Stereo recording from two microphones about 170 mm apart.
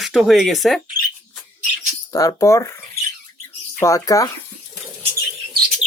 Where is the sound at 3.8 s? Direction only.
20° left (ahead or behind).